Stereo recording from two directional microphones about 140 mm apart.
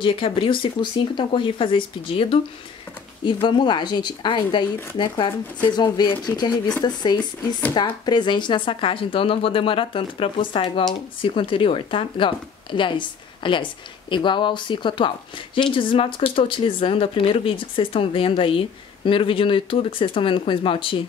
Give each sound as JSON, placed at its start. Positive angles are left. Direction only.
{"t": 0.0, "sound": "speech", "side_deg": 40}